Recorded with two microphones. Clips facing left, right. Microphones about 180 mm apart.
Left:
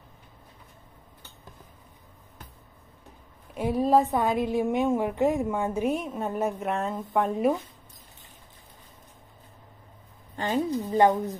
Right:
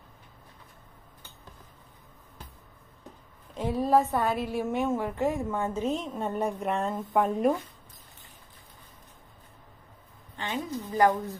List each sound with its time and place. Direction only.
3.5 s a woman's voice: 10° left (ahead or behind)
10.3 s a sound: 40° left (ahead or behind)
10.9 s speech: 25° left (ahead or behind)